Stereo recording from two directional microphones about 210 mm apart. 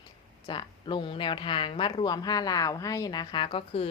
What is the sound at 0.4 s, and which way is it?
A woman's voice, 25° left (ahead or behind).